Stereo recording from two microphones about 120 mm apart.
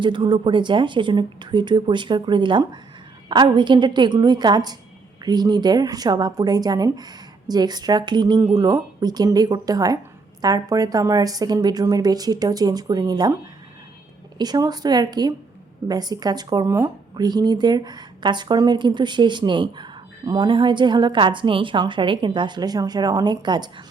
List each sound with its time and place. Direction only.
0.0 s speech: 40° right (ahead or behind)
14.3 s speech: 35° right (ahead or behind)